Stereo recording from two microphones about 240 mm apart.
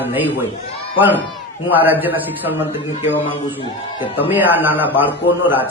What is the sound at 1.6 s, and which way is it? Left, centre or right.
Speech, centre.